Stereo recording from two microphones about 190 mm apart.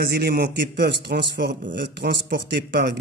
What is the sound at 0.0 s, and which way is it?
Speech, 55° right (ahead or behind).